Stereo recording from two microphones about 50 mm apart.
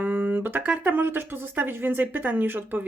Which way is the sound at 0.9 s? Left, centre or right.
Right.